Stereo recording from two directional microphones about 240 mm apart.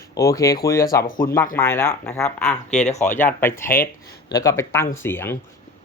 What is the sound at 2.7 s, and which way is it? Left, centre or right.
Speech, left.